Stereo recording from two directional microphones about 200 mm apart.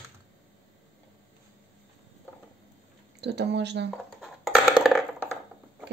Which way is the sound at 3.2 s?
55° right (ahead or behind).